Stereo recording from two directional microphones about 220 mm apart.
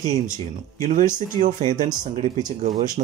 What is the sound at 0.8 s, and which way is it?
Speech, 35° right (ahead or behind).